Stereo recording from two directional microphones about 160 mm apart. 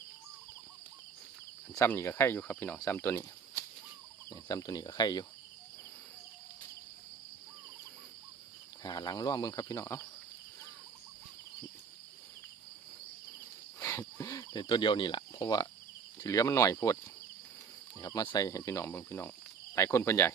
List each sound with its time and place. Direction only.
1.7 s speech: 15° left (ahead or behind)
8.8 s speech: 25° left (ahead or behind)
13.7 s cricket: 15° left (ahead or behind)
16.1 s speech: 20° left (ahead or behind)